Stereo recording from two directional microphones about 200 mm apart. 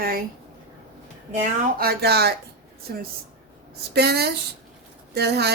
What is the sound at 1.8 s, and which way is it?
Speech, 50° right (ahead or behind).